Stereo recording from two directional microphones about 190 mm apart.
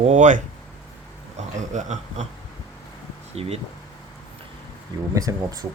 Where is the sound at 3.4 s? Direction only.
30° right (ahead or behind).